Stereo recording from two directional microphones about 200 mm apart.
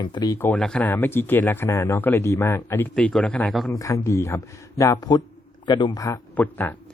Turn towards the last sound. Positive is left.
turn(degrees=10)  # may be behind; listen again after turning